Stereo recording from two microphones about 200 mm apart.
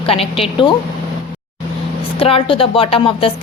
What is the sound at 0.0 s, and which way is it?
Speech, 30° left (ahead or behind).